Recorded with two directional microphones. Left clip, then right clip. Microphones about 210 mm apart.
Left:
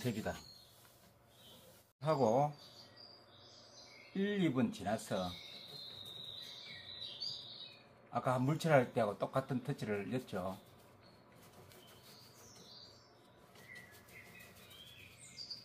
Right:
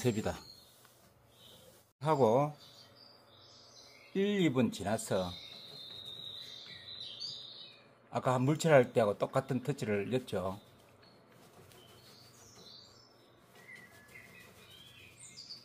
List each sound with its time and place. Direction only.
0.0 s speech: 50° right (ahead or behind)
2.0 s speech: 60° right (ahead or behind)
4.1 s speech: 60° right (ahead or behind)
8.1 s speech: 60° right (ahead or behind)